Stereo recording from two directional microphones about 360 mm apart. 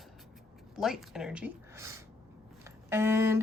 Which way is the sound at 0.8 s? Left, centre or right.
Centre.